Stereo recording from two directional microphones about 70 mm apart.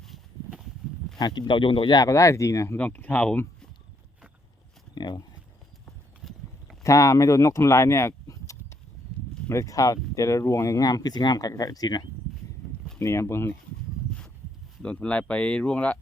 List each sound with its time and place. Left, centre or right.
0.0 s a sound: centre
1.2 s speech: left
1.9 s speech: left
2.1 s speech: left
2.7 s speech: left
4.9 s speech: left
5.8 s clip-clop: centre
6.8 s speech: left
10.8 s speech: left
12.6 s a sound: centre
13.0 s speech: left
14.8 s speech: centre